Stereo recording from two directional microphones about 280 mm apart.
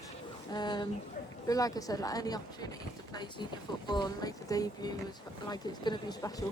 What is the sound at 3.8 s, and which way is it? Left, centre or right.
Speech, centre.